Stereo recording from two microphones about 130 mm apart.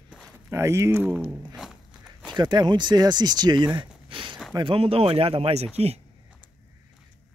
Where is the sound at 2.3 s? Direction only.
35° right (ahead or behind); by 6.0 s 50° right (ahead or behind).